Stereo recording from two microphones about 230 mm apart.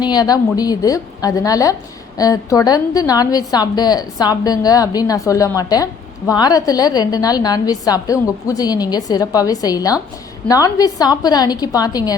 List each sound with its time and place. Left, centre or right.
0.0 s a woman's voice: centre